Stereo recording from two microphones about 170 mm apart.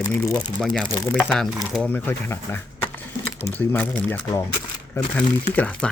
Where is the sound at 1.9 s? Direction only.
10° left (ahead or behind).